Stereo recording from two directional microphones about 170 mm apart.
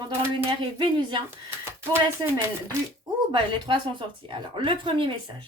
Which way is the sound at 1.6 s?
15° right (ahead or behind).